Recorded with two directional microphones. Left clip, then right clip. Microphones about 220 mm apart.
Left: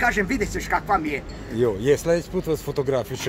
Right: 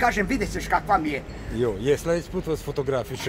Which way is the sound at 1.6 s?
15° left (ahead or behind).